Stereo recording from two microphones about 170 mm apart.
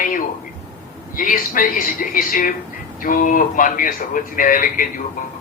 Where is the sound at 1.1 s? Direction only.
50° left (ahead or behind).